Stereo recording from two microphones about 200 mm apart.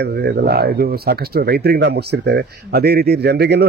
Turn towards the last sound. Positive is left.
turn(degrees=-55)  # may be behind; listen again after turning